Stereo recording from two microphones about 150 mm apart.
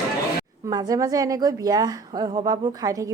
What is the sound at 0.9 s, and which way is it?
A woman's voice, 25° right (ahead or behind).